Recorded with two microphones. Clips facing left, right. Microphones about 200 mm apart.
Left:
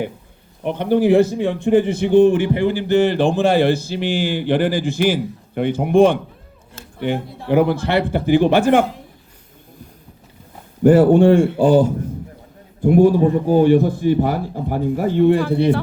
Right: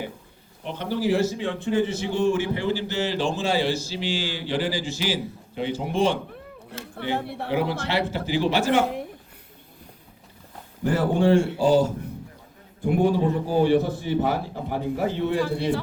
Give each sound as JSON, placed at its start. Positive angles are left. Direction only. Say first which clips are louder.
{"t": 0.6, "sound": "a man's voice", "louder": "left 10 dB", "side_deg": 55}
{"t": 7.5, "sound": "a man's voice", "louder": "left 9 dB", "side_deg": 55}
{"t": 10.8, "sound": "a man's voice", "louder": "left 10 dB", "side_deg": 55}